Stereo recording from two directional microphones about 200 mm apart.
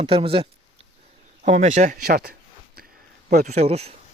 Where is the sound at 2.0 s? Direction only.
50° right (ahead or behind).